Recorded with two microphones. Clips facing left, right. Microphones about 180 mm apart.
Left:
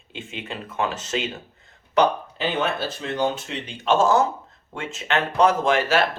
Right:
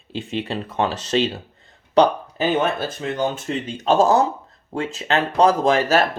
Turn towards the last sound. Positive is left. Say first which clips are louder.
# right 3 dB
turn(degrees=-40)  # may be behind; listen again after turning